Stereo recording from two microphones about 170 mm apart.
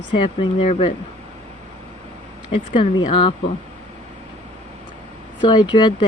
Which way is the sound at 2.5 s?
30° left (ahead or behind).